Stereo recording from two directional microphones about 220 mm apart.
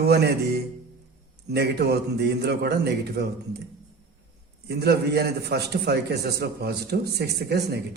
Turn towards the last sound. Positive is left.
turn(degrees=-50)  # may be behind; listen again after turning